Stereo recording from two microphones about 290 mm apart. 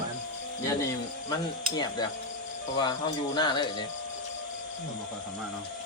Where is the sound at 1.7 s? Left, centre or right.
Centre.